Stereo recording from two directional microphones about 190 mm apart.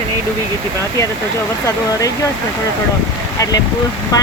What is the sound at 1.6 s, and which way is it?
Speech, 20° left (ahead or behind).